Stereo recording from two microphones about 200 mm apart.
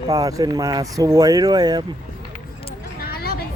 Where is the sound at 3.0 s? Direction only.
50° left (ahead or behind).